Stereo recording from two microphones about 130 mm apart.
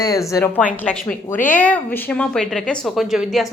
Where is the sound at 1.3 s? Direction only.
85° left.